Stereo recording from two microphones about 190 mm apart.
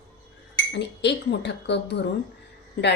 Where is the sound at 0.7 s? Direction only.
65° left (ahead or behind).